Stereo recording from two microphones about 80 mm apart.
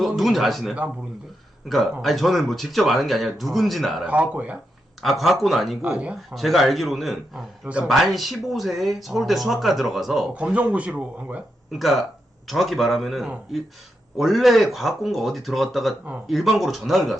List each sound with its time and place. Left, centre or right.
0.0 s speech: centre
4.0 s speech: centre
5.0 s speech: centre
5.8 s speech: centre
6.3 s speech: centre
10.3 s speech: centre
11.7 s speech: centre